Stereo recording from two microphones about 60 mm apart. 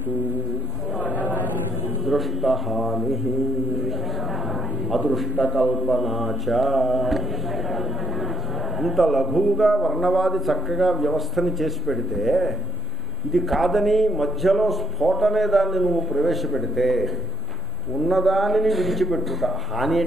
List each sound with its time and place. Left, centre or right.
0.9 s a sound: left
2.0 s a man's voice: centre
5.6 s a man's voice: centre
8.7 s a man's voice: centre